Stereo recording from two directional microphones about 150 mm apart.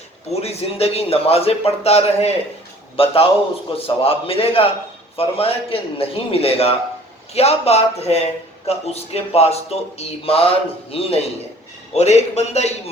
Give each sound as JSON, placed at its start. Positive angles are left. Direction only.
{"t": 0.3, "sound": "a man's voice", "side_deg": 45}